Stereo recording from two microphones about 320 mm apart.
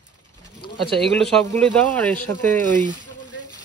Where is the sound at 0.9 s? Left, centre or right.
Centre.